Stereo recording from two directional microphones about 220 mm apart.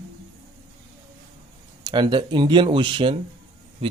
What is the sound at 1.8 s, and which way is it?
Speech, 20° right (ahead or behind).